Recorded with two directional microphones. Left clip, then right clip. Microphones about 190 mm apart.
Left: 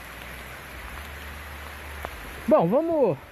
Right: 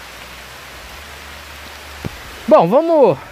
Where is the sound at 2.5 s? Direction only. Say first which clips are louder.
Right 10 dB; 20° right (ahead or behind).